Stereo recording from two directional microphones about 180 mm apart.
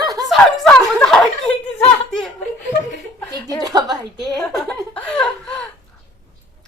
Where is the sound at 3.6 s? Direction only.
20° right (ahead or behind).